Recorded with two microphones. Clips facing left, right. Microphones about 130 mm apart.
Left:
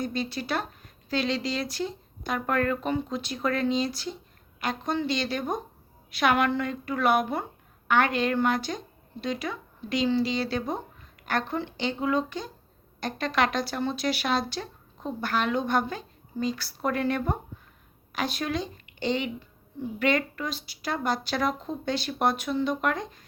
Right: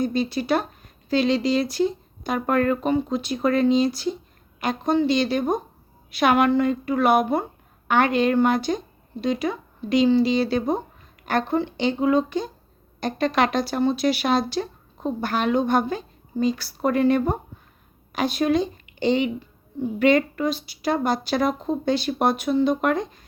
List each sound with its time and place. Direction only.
0.0 s a woman's voice: 15° right (ahead or behind)